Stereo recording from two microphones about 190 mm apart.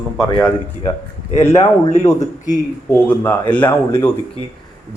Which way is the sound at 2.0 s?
15° left (ahead or behind).